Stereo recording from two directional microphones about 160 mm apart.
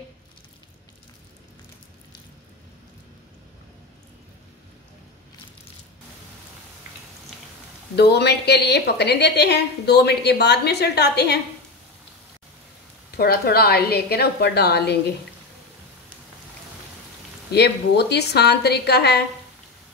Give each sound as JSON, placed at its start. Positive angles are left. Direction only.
{"t": 7.9, "sound": "a woman's voice", "side_deg": 90}
{"t": 13.1, "sound": "a woman's voice", "side_deg": 75}
{"t": 17.5, "sound": "a woman's voice", "side_deg": 90}